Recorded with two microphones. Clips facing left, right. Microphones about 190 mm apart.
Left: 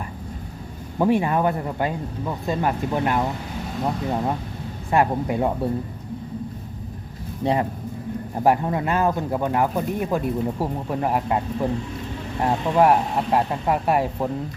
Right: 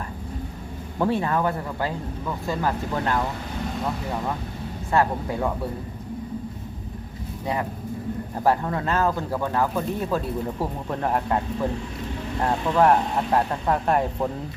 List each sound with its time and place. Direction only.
0.9 s speech: 15° left (ahead or behind)
7.4 s speech: 25° left (ahead or behind); by 14.3 s 10° left (ahead or behind)